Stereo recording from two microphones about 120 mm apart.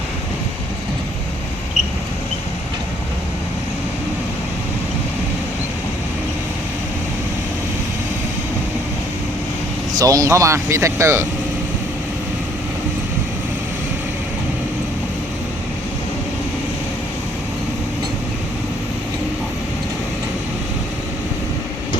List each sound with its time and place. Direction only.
10.0 s speech: 30° right (ahead or behind)